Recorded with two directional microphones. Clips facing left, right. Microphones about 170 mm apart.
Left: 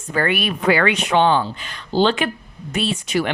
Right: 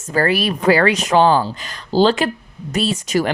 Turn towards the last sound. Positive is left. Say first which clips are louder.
# right 3 dB
turn(degrees=-40)  # may be behind; listen again after turning